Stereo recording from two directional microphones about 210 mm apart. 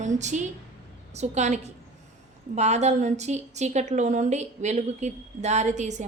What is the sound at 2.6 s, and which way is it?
A woman's voice, 35° right (ahead or behind).